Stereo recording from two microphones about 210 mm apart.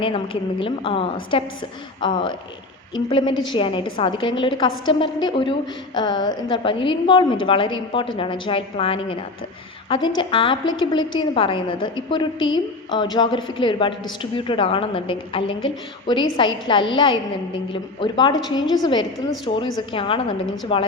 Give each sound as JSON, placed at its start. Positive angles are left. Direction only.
{"t": 0.6, "sound": "a woman's voice", "side_deg": 25}